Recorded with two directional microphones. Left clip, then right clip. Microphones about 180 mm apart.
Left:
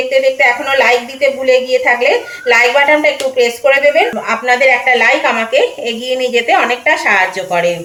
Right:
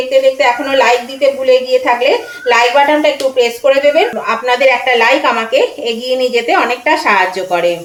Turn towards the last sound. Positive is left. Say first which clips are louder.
# even
turn(degrees=-15)  # may be behind; listen again after turning